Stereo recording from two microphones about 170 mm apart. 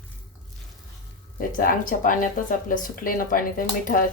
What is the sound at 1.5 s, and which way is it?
Speech, 55° left (ahead or behind).